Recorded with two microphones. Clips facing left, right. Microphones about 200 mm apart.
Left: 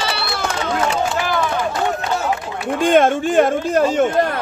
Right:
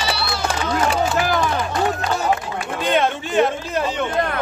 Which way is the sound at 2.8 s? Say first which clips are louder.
Left 6 dB; 50° left (ahead or behind).